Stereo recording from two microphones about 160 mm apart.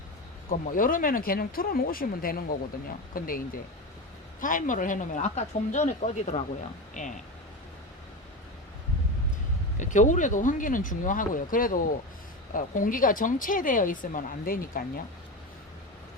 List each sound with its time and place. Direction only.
0.5 s speech: 55° left (ahead or behind)
9.7 s speech: 50° left (ahead or behind)